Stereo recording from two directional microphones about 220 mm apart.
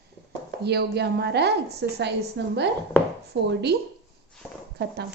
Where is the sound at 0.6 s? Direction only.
50° right (ahead or behind).